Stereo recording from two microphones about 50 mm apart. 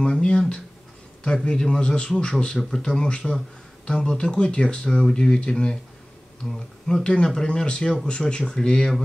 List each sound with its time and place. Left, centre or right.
0.0 s a man's voice: centre
6.9 s speech: centre